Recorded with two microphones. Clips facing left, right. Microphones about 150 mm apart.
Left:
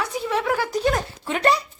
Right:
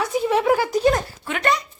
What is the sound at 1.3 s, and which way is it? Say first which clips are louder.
Speech: left 2 dB; 35° left (ahead or behind).